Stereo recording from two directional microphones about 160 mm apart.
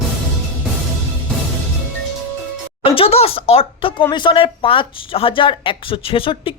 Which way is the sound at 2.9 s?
35° left (ahead or behind).